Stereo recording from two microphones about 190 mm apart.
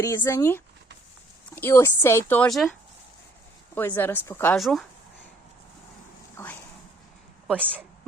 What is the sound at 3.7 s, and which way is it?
Speech, 10° left (ahead or behind).